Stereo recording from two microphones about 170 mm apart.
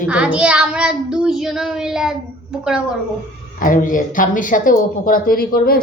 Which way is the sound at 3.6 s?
50° left (ahead or behind).